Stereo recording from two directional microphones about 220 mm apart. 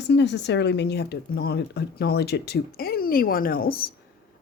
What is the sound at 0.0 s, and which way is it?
A woman's voice, 50° left (ahead or behind).